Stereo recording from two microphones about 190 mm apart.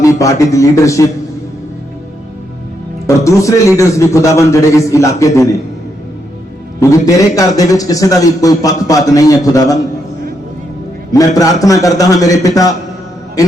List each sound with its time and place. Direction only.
0.0 s a man's voice: 15° left (ahead or behind)
3.2 s a man's voice: 15° left (ahead or behind)
6.7 s a man's voice: 20° left (ahead or behind)
11.3 s a man's voice: 15° left (ahead or behind)